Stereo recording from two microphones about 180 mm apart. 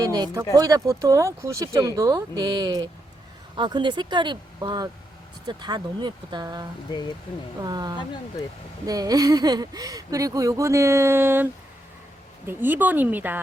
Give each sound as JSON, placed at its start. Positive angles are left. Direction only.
{"t": 0.0, "sound": "speech", "side_deg": -20}
{"t": 12.5, "sound": "speech", "side_deg": -10}